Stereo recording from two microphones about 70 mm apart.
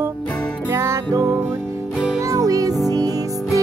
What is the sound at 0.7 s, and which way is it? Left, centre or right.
Music, right.